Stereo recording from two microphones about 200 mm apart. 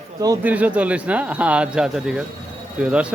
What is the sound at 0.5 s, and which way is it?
Speech, 5° right (ahead or behind).